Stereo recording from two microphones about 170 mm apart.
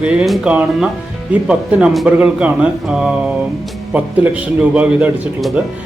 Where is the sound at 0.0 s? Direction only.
5° right (ahead or behind).